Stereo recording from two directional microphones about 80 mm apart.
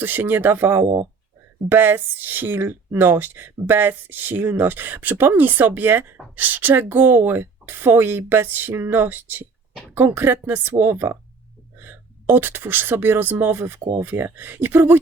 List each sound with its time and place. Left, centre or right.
0.0 s speech: right